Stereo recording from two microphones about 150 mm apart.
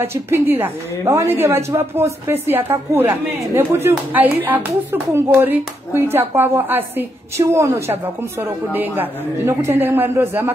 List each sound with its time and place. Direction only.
0.0 s a woman's voice: 15° right (ahead or behind)